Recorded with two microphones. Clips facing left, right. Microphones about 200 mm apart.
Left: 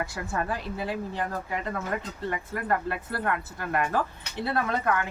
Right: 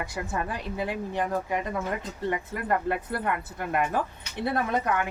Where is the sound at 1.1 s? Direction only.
15° right (ahead or behind).